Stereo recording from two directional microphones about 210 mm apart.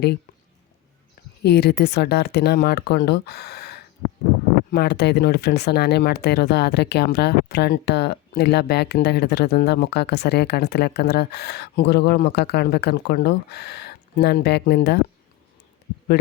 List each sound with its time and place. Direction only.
1.4 s speech: 50° left (ahead or behind)